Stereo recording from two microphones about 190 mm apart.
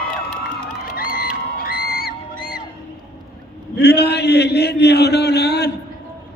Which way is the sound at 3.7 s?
60° left (ahead or behind).